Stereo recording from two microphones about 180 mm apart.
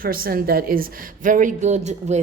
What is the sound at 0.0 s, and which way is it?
A woman's voice, 55° right (ahead or behind).